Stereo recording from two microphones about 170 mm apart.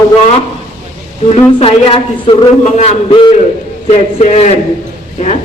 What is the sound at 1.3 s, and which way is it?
A man's voice, 35° left (ahead or behind).